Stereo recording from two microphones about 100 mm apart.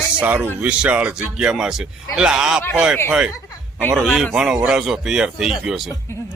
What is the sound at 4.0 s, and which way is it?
A man's voice, 5° right (ahead or behind).